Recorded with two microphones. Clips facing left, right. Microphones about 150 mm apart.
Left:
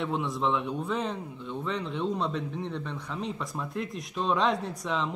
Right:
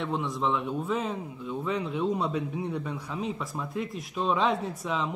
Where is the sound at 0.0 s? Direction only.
Centre (ahead or behind).